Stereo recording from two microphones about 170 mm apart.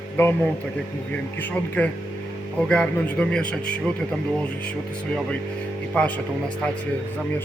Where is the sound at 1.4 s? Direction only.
10° left (ahead or behind).